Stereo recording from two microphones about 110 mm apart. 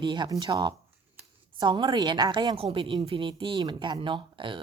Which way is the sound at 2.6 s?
55° right (ahead or behind).